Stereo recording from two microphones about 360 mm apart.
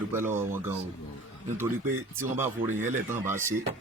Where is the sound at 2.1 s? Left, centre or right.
Centre.